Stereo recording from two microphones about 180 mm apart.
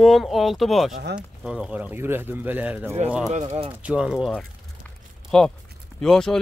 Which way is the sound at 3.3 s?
35° right (ahead or behind).